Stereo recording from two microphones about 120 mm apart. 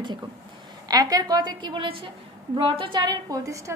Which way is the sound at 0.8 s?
30° right (ahead or behind).